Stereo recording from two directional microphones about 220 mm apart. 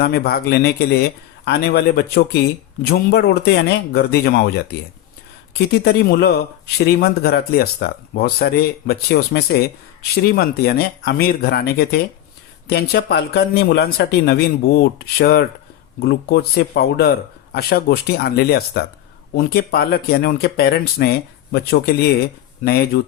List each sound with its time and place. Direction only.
0.0 s speech: 45° left (ahead or behind)